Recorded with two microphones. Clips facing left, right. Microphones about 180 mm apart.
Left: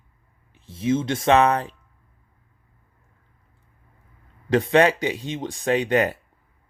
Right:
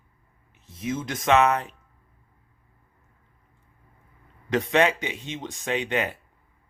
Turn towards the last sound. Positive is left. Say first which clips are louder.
# left 6 dB
turn(degrees=40)  # may be behind; listen again after turning